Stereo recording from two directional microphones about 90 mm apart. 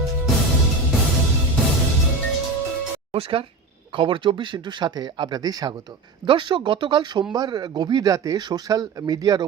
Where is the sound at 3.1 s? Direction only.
90° right.